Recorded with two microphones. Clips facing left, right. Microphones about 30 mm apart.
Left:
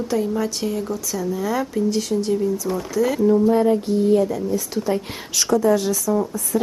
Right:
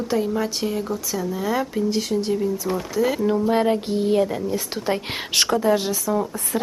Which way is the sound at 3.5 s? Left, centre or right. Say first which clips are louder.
Left 2 dB; right.